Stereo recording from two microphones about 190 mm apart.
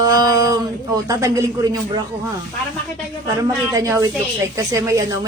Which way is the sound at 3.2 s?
15° right (ahead or behind).